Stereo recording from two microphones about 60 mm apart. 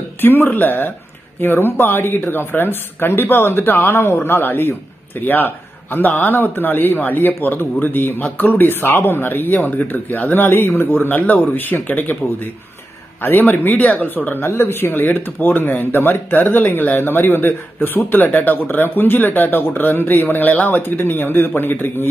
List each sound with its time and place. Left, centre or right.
0.2 s speech: left
13.2 s speech: left